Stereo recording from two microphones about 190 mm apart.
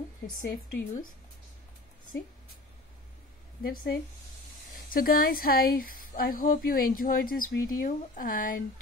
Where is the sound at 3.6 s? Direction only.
50° left (ahead or behind).